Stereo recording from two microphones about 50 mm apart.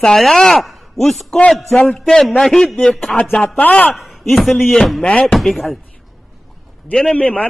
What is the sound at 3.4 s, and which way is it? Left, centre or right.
Speech, left.